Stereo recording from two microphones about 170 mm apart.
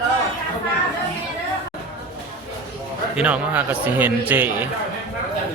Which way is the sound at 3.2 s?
10° right (ahead or behind).